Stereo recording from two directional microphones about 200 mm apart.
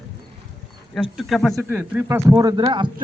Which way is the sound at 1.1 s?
Centre (ahead or behind).